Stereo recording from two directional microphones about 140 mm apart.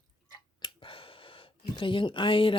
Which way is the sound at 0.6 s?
40° left (ahead or behind).